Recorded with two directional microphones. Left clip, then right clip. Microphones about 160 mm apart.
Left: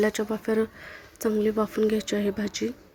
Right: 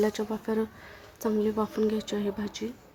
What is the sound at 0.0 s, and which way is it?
Speech, 10° left (ahead or behind).